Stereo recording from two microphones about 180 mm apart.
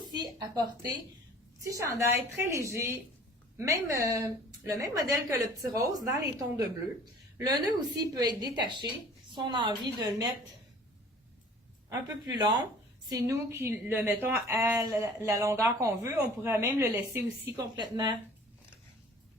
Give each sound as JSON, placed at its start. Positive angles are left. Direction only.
{"t": 0.0, "sound": "a sound", "side_deg": -25}
{"t": 1.6, "sound": "a woman's voice", "side_deg": -15}
{"t": 11.9, "sound": "a woman's voice", "side_deg": -20}
{"t": 17.7, "sound": "a woman's voice", "side_deg": -25}